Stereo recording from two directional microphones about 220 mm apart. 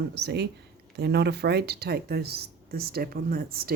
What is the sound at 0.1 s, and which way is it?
Speech, 50° right (ahead or behind).